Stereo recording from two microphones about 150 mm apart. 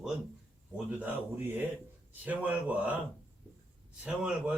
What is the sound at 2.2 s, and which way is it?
Speech, 10° right (ahead or behind).